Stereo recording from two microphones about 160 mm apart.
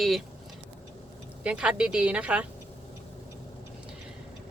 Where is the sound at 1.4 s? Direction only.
5° right (ahead or behind).